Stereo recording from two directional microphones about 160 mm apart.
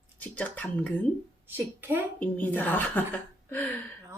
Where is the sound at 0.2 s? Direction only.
10° left (ahead or behind).